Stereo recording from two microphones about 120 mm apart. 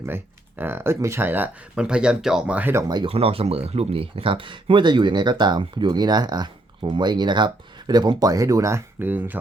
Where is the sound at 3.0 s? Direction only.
55° right (ahead or behind).